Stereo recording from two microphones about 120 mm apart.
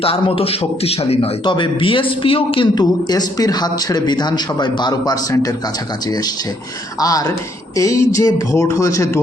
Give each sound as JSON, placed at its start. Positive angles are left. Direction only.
{"t": 0.0, "sound": "a man's voice", "side_deg": 50}
{"t": 3.1, "sound": "a man's voice", "side_deg": 30}
{"t": 7.0, "sound": "speech", "side_deg": 30}